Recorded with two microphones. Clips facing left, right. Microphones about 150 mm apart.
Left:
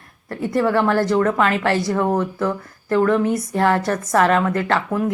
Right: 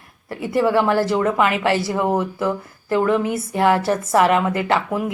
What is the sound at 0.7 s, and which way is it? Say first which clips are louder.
A woman's voice: even; 20° right (ahead or behind).